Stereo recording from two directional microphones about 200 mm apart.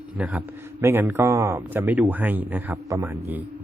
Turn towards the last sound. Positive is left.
turn(degrees=-10)  # may be behind; listen again after turning